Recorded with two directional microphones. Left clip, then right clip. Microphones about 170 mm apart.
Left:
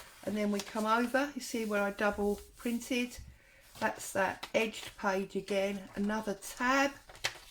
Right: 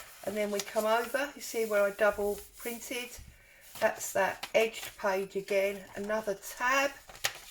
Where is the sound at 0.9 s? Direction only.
40° left (ahead or behind).